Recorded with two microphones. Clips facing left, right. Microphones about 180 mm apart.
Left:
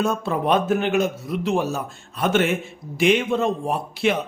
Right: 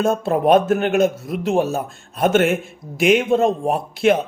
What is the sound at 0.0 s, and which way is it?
A man's voice, 50° right (ahead or behind).